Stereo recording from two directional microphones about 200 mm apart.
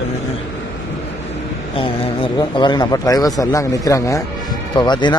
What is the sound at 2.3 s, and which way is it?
A man's voice, 20° left (ahead or behind).